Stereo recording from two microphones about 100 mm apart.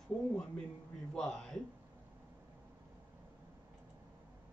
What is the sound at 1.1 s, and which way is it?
Speech, 5° left (ahead or behind).